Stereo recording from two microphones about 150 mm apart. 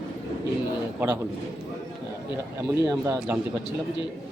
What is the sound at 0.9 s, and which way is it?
Speech, 15° right (ahead or behind).